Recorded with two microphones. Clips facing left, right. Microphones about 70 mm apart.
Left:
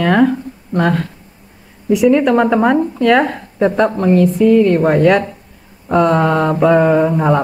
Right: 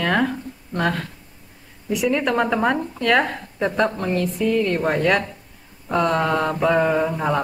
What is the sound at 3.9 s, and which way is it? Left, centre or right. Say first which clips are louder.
Speech: left 10 dB; centre.